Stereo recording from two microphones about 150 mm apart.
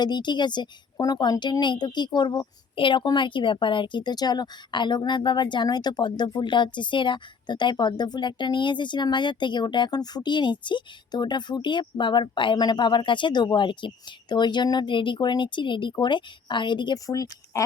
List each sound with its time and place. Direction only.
0.0 s a woman's voice: 30° left (ahead or behind)